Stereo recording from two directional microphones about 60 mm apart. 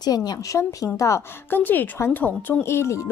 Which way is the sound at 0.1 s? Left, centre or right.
Left.